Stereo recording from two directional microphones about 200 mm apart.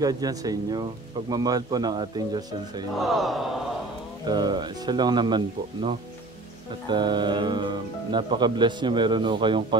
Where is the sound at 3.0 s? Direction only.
Centre (ahead or behind).